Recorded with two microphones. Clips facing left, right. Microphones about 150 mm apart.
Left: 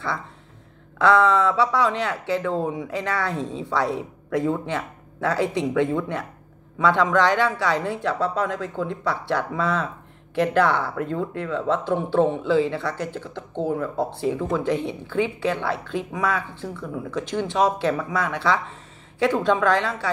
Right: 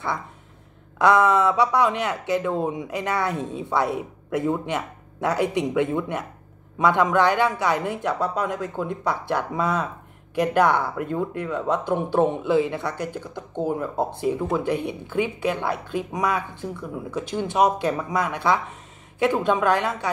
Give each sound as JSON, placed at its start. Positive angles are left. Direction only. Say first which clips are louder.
{"t": 0.9, "sound": "speech", "louder": "even", "side_deg": -15}